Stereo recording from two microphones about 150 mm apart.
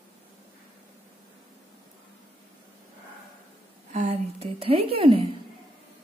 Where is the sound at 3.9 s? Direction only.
50° right (ahead or behind).